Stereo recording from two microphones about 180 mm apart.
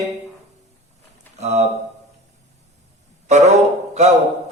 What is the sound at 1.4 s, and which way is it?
Speech, 40° right (ahead or behind).